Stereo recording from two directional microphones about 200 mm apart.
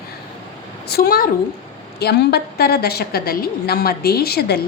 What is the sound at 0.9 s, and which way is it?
A woman's voice, 50° left (ahead or behind).